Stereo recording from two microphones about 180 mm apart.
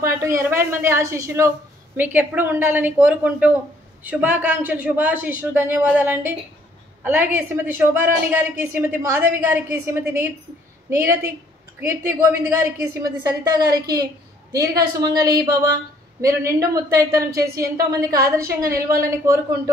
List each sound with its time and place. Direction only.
0.4 s a woman's voice: 15° right (ahead or behind)